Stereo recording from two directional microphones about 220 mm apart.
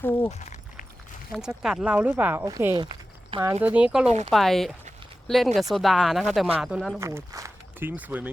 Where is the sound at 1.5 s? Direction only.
5° right (ahead or behind).